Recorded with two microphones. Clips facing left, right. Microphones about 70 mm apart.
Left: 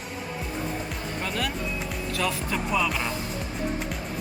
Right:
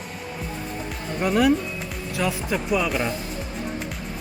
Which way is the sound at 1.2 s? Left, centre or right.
Centre.